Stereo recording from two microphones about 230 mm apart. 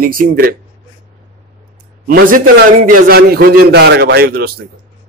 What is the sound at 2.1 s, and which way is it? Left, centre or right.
A man's voice, right.